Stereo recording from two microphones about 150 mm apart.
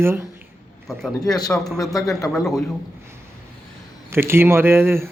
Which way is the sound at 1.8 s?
25° left (ahead or behind).